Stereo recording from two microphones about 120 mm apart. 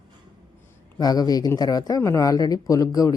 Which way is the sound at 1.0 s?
35° left (ahead or behind).